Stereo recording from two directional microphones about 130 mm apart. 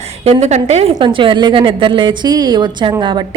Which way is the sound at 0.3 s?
55° right (ahead or behind).